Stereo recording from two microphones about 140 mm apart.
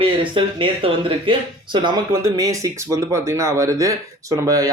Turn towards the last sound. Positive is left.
turn(degrees=-25)  # may be behind; listen again after turning